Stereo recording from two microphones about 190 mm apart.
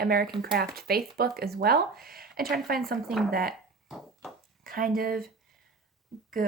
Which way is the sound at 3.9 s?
Centre (ahead or behind).